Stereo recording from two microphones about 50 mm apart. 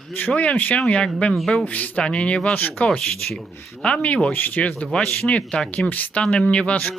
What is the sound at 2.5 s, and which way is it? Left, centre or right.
Speech, left.